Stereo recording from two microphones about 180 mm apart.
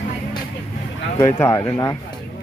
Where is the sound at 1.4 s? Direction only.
15° left (ahead or behind).